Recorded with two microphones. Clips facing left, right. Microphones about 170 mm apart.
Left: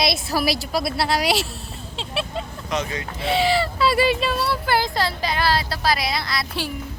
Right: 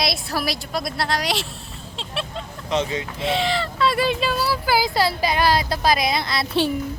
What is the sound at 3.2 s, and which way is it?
Speech, 5° left (ahead or behind).